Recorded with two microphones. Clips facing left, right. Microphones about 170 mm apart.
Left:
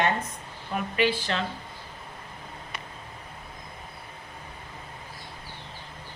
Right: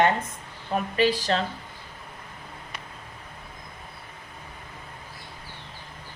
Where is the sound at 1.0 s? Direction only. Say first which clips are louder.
Right 3 dB; 40° right (ahead or behind).